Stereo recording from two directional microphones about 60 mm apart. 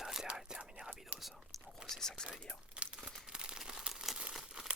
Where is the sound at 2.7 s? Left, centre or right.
Centre.